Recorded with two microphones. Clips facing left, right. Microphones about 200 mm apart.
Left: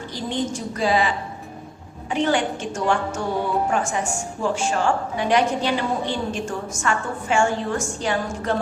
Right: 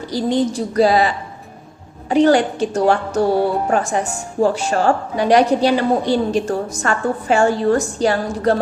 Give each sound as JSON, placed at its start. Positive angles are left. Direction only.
{"t": 0.1, "sound": "a woman's voice", "side_deg": -35}